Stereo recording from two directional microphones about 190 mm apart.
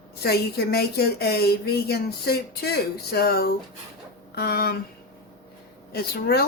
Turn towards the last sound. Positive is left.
turn(degrees=55)  # may be behind; listen again after turning